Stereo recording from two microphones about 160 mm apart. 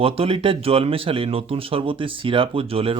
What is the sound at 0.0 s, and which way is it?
Speech, 35° right (ahead or behind).